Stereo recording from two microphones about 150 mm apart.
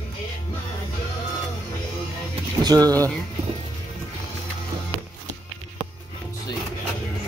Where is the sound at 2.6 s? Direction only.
25° right (ahead or behind).